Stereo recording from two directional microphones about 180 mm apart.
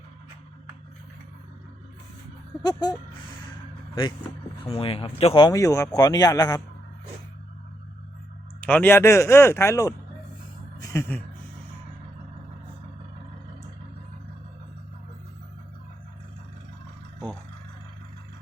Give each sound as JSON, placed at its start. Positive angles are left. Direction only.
{"t": 2.6, "sound": "speech", "side_deg": 20}
{"t": 4.6, "sound": "speech", "side_deg": 30}
{"t": 8.6, "sound": "a man's voice", "side_deg": 10}
{"t": 10.8, "sound": "a sound", "side_deg": 15}